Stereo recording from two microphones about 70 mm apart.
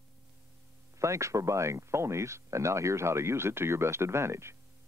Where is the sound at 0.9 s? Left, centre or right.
Right.